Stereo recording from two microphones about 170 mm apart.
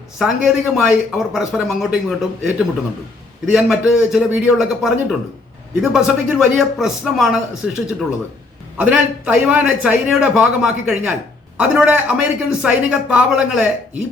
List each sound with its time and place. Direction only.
0.2 s speech: centre (ahead or behind)
8.8 s a man's voice: 5° right (ahead or behind)